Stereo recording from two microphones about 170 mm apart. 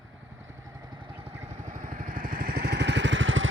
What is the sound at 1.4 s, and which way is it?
Vehicle, 50° right (ahead or behind).